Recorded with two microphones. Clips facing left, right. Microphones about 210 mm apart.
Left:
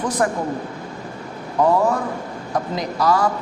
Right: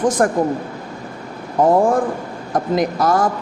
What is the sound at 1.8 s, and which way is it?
Speech, 50° right (ahead or behind).